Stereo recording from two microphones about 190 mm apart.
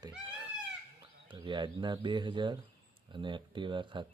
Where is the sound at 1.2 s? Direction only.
25° right (ahead or behind).